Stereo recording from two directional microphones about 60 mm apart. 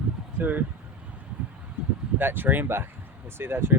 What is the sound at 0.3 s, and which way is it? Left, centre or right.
Speech, right.